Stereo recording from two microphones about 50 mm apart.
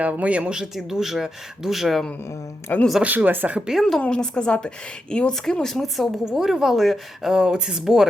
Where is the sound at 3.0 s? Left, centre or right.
Right.